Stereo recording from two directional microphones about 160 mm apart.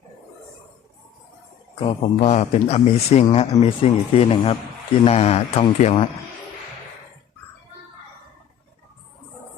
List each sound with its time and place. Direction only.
1.8 s speech: 40° left (ahead or behind)